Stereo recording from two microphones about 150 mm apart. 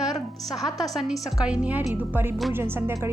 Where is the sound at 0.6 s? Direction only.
Centre (ahead or behind).